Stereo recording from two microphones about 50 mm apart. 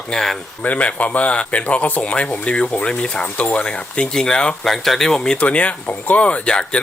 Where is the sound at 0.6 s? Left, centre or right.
Left.